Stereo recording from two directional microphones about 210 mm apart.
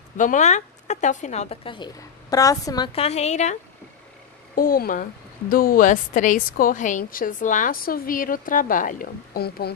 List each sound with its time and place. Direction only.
0.2 s a woman's voice: 35° left (ahead or behind)
4.6 s a woman's voice: 45° left (ahead or behind)